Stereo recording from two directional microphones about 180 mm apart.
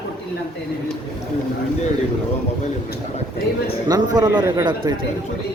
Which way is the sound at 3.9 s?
20° right (ahead or behind).